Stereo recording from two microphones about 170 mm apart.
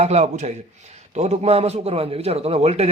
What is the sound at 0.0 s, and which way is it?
A man's voice, 40° right (ahead or behind).